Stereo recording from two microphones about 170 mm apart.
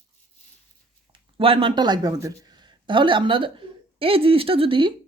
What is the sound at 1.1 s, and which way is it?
Speech, 30° right (ahead or behind).